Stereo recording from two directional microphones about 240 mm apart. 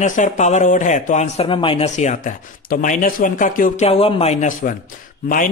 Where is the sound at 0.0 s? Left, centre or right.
Left.